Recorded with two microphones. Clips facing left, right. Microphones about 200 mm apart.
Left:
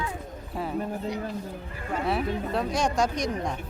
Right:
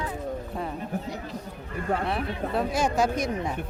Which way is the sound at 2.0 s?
Centre (ahead or behind).